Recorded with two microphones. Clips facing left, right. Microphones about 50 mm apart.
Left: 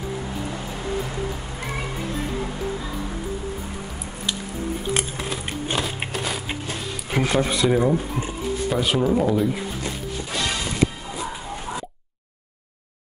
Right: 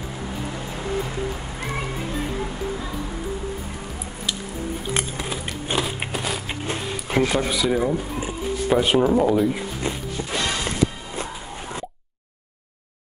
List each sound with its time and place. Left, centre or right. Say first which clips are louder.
4.9 s music: even; centre
5.7 s biting: right 2 dB; centre
7.1 s speech: even; centre
8.2 s speech: even; centre
9.2 s speech: right 2 dB; centre
9.8 s music: right 2 dB; right